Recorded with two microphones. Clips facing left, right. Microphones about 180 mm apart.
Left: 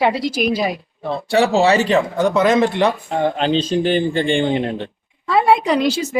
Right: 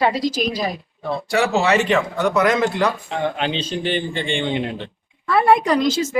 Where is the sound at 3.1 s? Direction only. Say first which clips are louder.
Left 5 dB; 40° left (ahead or behind).